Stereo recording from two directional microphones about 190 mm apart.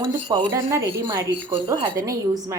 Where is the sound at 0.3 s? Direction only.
20° right (ahead or behind).